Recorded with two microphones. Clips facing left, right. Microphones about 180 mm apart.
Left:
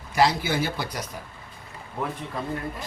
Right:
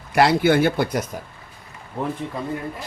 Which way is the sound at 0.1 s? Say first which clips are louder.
Right 6 dB; 60° right (ahead or behind).